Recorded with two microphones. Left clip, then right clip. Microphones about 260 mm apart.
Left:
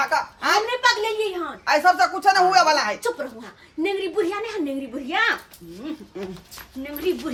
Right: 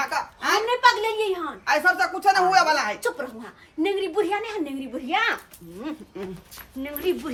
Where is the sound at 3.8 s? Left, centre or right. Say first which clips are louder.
Even; centre.